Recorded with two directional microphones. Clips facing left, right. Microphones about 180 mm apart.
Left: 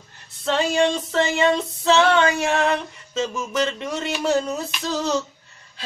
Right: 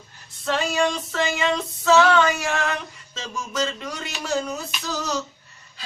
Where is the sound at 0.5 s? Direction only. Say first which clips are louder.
Left 3 dB; 30° left (ahead or behind).